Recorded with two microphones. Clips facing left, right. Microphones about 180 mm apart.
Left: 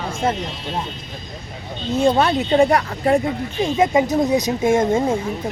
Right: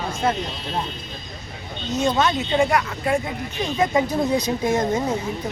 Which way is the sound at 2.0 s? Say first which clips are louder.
Left 4 dB; 35° left (ahead or behind).